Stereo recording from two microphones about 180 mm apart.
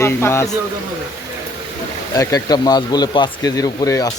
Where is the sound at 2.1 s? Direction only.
20° left (ahead or behind).